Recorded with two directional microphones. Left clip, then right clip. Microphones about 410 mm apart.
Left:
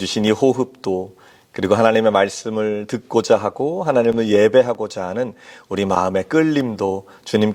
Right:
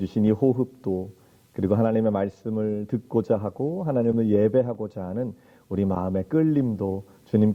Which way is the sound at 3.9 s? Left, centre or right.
Centre.